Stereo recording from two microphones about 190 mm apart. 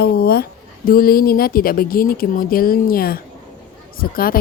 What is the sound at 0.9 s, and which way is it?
A woman's voice, 50° left (ahead or behind).